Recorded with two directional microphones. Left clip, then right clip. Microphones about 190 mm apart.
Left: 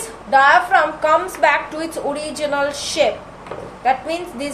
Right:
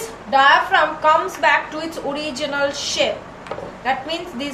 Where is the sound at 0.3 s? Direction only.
55° left (ahead or behind).